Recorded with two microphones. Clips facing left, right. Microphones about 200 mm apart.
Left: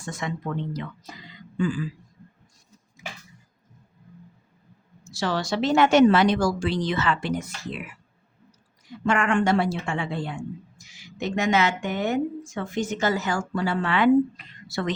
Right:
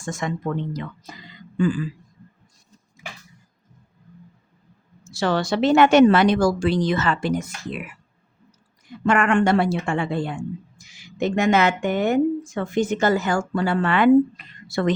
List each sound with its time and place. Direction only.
0.0 s speech: 45° right (ahead or behind)
5.0 s a woman's voice: 55° right (ahead or behind)
9.0 s a woman's voice: 60° right (ahead or behind)